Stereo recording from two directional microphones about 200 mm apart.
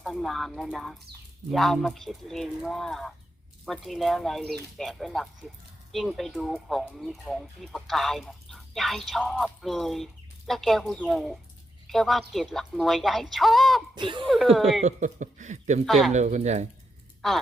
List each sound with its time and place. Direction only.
0.0 s speech: centre (ahead or behind)
13.9 s speech: 25° right (ahead or behind)
14.3 s speech: centre (ahead or behind)
14.8 s speech: 40° right (ahead or behind)
15.9 s speech: centre (ahead or behind)
16.1 s speech: 35° right (ahead or behind)
17.2 s speech: centre (ahead or behind)